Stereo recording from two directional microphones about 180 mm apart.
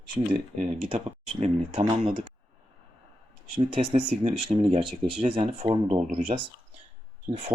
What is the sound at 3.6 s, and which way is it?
Speech, 35° right (ahead or behind).